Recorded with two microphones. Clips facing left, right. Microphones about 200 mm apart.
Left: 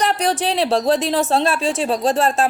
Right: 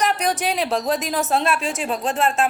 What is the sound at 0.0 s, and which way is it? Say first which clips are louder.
A woman's voice: left 2 dB; 30° left (ahead or behind).